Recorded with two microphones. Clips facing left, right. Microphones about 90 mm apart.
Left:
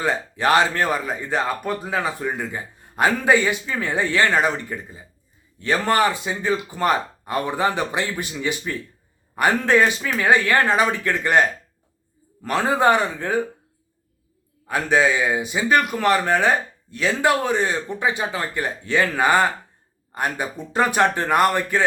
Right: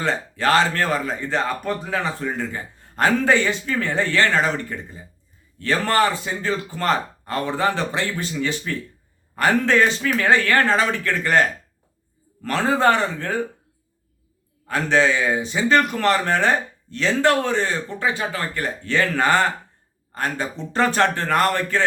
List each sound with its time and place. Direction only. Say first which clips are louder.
0.0 s a man's voice: even; 15° left (ahead or behind)
14.7 s a man's voice: even; 15° left (ahead or behind)